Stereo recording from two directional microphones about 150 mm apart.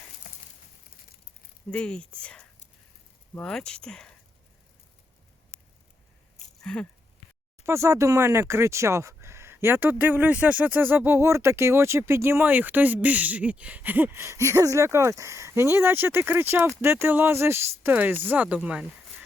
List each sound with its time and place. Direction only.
1.7 s speech: 5° left (ahead or behind)
6.6 s a sound: 5° left (ahead or behind)
7.6 s speech: 20° right (ahead or behind)